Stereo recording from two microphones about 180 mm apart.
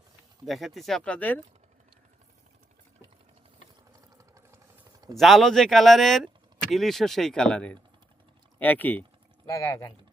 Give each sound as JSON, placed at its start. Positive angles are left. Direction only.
{"t": 0.4, "sound": "speech", "side_deg": 0}
{"t": 5.1, "sound": "speech", "side_deg": 0}